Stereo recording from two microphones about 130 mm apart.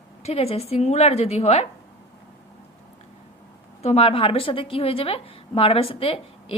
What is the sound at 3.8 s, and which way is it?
A woman's voice, 50° left (ahead or behind).